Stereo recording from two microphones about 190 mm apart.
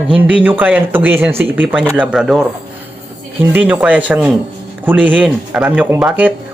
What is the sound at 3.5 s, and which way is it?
Speech, 5° right (ahead or behind).